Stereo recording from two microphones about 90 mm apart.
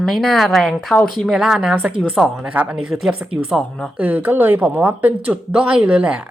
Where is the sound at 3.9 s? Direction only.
20° right (ahead or behind).